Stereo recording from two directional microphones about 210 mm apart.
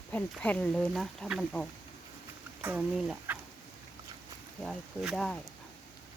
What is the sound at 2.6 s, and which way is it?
Speech, 10° right (ahead or behind).